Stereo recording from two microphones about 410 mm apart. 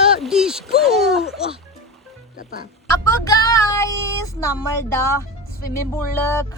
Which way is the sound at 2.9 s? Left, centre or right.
Centre.